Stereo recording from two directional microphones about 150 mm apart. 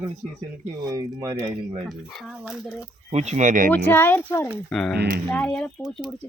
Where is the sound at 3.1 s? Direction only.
50° right (ahead or behind).